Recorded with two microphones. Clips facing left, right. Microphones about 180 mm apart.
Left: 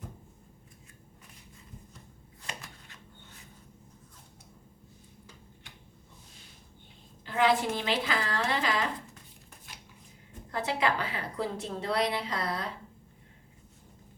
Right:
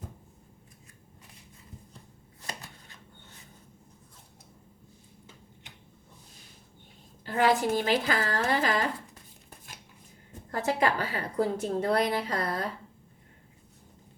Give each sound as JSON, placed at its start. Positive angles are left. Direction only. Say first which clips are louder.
{"t": 5.7, "sound": "a sound", "louder": "right 1 dB", "side_deg": -20}
{"t": 7.3, "sound": "a woman's voice", "louder": "right 2 dB", "side_deg": -40}
{"t": 10.5, "sound": "a woman's voice", "louder": "right 3 dB", "side_deg": -45}